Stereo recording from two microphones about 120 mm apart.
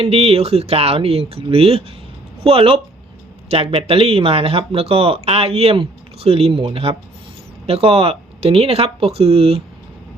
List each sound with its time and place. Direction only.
0.0 s speech: 55° right (ahead or behind)